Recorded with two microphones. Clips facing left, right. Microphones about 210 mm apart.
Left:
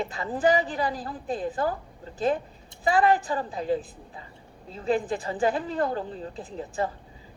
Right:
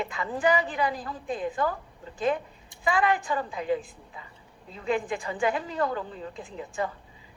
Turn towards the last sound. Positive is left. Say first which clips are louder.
# left 2 dB
turn(degrees=35)  # may be behind; listen again after turning